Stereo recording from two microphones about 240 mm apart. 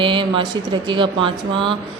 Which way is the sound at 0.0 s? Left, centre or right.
Right.